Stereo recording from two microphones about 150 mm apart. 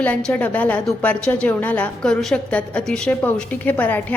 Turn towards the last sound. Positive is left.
turn(degrees=10)  # may be behind; listen again after turning